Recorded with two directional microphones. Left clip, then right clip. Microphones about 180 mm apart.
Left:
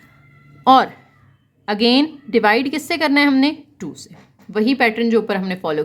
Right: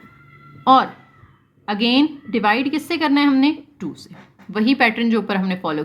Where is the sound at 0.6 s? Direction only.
40° left (ahead or behind).